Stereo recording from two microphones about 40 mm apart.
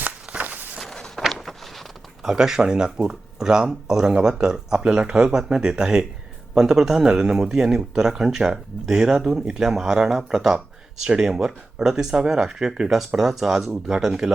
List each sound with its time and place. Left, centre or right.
0.0 s walk: right
0.8 s walk: centre
1.3 s a sound: centre
2.3 s speech: centre